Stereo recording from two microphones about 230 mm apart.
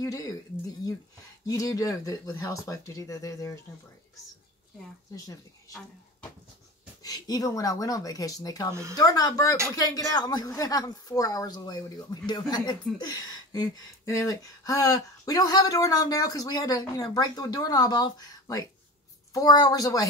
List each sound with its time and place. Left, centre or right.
0.0 s a sound: centre
1.4 s a woman's voice: centre
5.1 s a woman's voice: centre
7.0 s a woman's voice: centre